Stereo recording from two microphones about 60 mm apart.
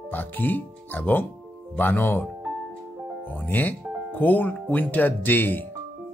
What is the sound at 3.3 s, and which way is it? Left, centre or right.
Speech, left.